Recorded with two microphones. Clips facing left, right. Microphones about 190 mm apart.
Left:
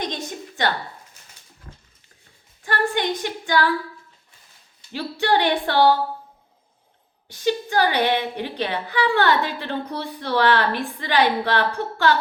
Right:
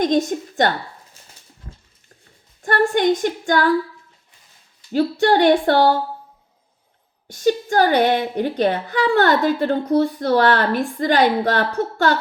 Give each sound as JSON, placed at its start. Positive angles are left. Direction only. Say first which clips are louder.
{"t": 0.0, "sound": "a woman's voice", "louder": "right 11 dB", "side_deg": -45}
{"t": 2.6, "sound": "a woman's voice", "louder": "right 7 dB", "side_deg": -45}
{"t": 4.9, "sound": "a woman's voice", "louder": "right 6 dB", "side_deg": -45}
{"t": 7.3, "sound": "a woman's voice", "louder": "right 5 dB", "side_deg": -45}